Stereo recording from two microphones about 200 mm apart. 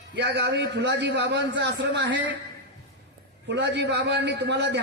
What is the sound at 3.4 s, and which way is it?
A man's voice, 60° right (ahead or behind).